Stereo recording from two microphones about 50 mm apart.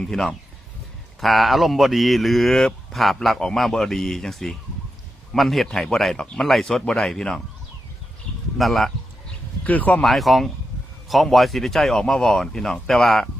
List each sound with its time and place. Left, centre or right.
0.0 s speech: centre
1.2 s speech: centre
8.5 s speech: centre
9.6 s speech: left
10.0 s speech: centre